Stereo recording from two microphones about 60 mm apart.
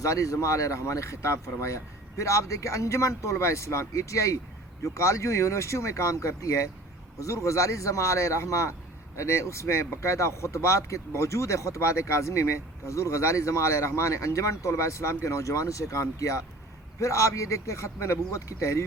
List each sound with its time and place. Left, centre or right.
0.0 s speech: left